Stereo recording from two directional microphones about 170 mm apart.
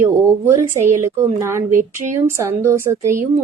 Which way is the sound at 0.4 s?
15° right (ahead or behind).